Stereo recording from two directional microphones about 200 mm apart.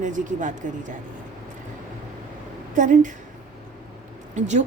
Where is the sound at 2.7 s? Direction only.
40° right (ahead or behind).